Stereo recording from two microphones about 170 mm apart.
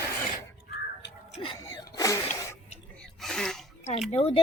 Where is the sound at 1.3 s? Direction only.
30° left (ahead or behind).